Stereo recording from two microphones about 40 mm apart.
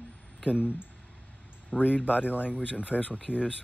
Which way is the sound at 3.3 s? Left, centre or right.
Left.